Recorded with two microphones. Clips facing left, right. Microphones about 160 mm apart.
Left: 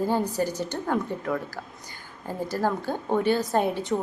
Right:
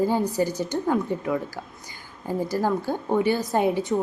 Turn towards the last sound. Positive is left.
turn(degrees=-10)  # may be behind; listen again after turning